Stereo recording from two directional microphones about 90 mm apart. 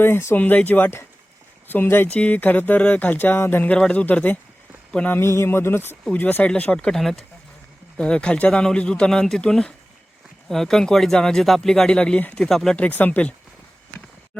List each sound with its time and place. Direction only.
0.0 s speech: 25° left (ahead or behind)
3.7 s speech: 10° left (ahead or behind)
5.2 s speech: 30° left (ahead or behind); by 12.7 s 5° left (ahead or behind)
12.7 s speech: 15° left (ahead or behind)